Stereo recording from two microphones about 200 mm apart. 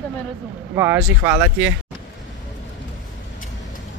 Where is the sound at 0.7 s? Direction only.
10° right (ahead or behind).